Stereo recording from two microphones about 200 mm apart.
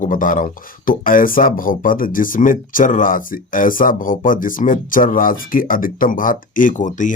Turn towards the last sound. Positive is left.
turn(degrees=40)  # may be behind; listen again after turning